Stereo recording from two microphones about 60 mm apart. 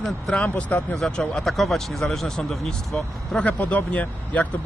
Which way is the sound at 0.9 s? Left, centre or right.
Centre.